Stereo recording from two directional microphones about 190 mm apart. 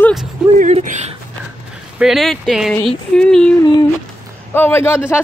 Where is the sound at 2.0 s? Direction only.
Centre (ahead or behind).